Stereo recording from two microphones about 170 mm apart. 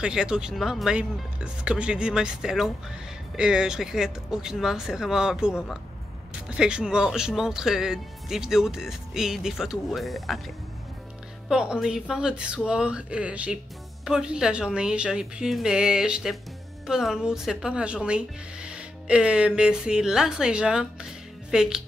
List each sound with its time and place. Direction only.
0.0 s speech: 5° right (ahead or behind)